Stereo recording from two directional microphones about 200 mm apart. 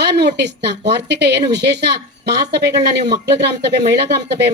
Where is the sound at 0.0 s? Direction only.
55° right (ahead or behind).